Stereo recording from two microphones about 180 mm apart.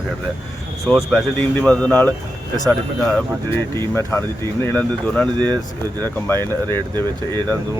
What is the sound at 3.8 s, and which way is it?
Speech, 15° left (ahead or behind).